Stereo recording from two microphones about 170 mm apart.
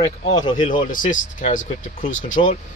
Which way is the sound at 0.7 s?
50° left (ahead or behind).